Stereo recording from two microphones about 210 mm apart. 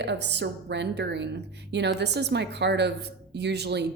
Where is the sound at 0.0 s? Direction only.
55° right (ahead or behind).